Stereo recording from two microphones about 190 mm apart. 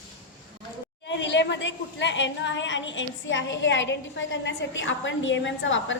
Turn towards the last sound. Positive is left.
turn(degrees=80)